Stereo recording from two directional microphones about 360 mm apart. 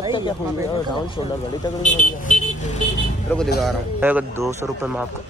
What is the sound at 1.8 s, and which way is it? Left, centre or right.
Speech, centre.